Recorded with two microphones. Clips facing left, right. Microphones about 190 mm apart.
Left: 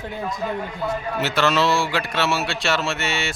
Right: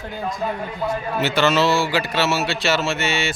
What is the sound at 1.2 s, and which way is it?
Speech, centre (ahead or behind).